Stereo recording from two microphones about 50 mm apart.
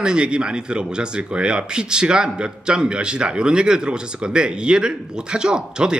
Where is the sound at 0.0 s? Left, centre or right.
Centre.